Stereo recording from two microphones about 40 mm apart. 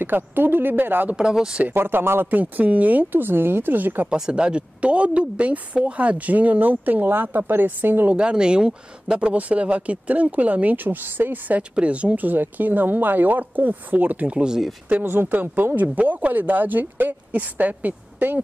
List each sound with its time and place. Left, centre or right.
0.0 s speech: right
1.1 s speech: centre
1.7 s speech: right
2.3 s speech: right
4.1 s speech: right
8.1 s speech: right
9.3 s speech: right
11.7 s speech: right
12.2 s speech: right
14.2 s speech: right
15.0 s speech: right